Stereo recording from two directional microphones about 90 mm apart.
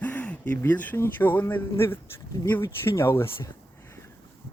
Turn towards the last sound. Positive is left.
turn(degrees=25)  # may be behind; listen again after turning